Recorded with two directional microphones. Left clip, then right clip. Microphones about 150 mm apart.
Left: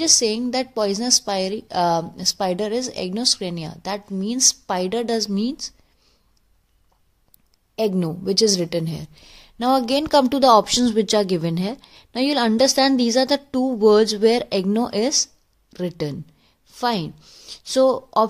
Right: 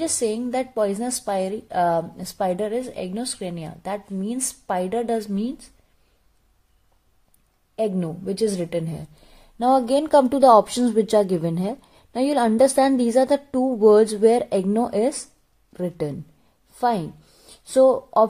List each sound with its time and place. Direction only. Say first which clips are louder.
0.2 s a woman's voice: left 2 dB; 10° left (ahead or behind)
7.7 s a woman's voice: left 2 dB; 15° left (ahead or behind)